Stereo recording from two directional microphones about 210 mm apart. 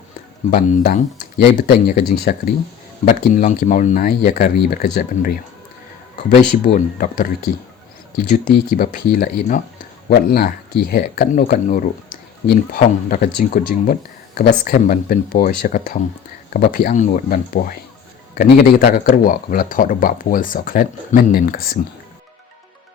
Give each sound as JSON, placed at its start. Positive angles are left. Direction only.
{"t": 0.5, "sound": "speech", "side_deg": 45}